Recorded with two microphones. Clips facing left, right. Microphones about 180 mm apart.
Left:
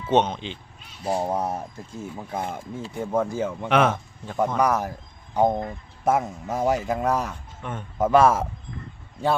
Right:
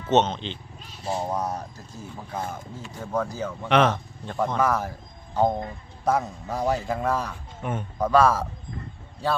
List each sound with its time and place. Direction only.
0.1 s speech: 10° left (ahead or behind)
1.0 s speech: 30° left (ahead or behind)
3.7 s speech: 5° left (ahead or behind)
7.6 s a man's voice: 10° right (ahead or behind)
8.1 s speech: 20° left (ahead or behind)